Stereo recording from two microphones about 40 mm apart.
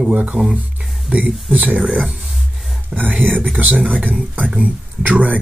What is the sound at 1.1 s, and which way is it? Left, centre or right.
Speech, centre.